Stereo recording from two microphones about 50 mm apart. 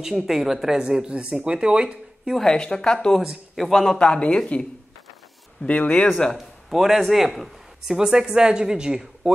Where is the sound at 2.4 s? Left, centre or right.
Centre.